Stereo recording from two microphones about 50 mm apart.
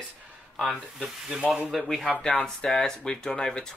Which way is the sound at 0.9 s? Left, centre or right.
Centre.